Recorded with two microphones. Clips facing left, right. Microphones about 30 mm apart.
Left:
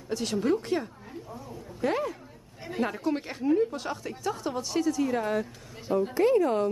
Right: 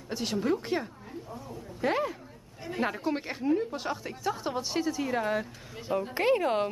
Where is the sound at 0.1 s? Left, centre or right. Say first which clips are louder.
Left 2 dB; centre.